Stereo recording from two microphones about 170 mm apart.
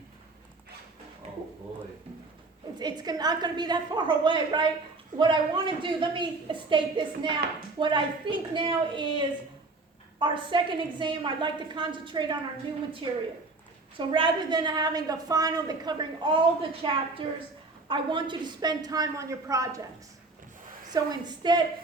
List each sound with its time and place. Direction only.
2.7 s a woman's voice: 25° right (ahead or behind)
20.9 s a woman's voice: 25° right (ahead or behind)